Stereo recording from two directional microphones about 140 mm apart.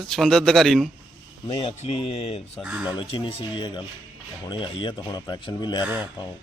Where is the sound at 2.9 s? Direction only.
35° left (ahead or behind).